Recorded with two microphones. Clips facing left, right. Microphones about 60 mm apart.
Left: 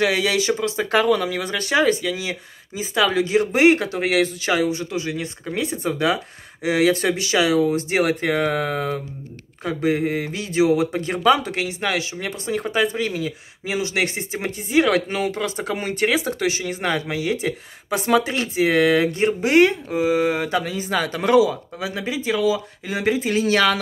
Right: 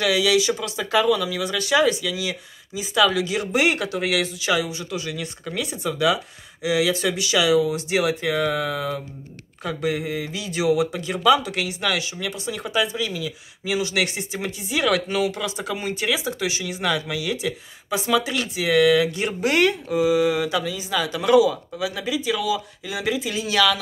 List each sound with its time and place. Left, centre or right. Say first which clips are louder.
0.0 s speech: even; left
9.6 s speech: left 4 dB; left
10.0 s speech: left 4 dB; left
10.6 s speech: left 3 dB; left
11.0 s speech: left 1 dB; left
13.7 s speech: even; left
19.4 s speech: left 3 dB; left